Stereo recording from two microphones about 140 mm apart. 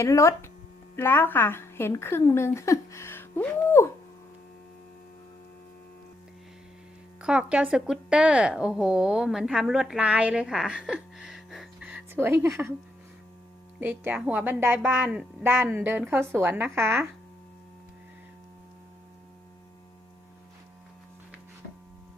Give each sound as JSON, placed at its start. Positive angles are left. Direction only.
{"t": 0.0, "sound": "a woman's voice", "side_deg": 20}
{"t": 7.2, "sound": "speech", "side_deg": -5}
{"t": 13.7, "sound": "a woman's voice", "side_deg": -15}